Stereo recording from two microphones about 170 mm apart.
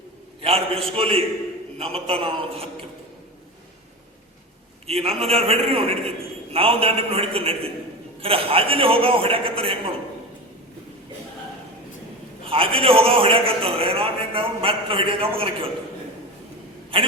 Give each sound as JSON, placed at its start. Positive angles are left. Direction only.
{"t": 0.4, "sound": "a man's voice", "side_deg": -35}
{"t": 4.9, "sound": "a man's voice", "side_deg": -35}
{"t": 12.5, "sound": "a man's voice", "side_deg": -30}